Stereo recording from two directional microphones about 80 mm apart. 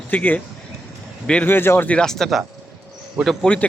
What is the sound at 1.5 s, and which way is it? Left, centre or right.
Speech, left.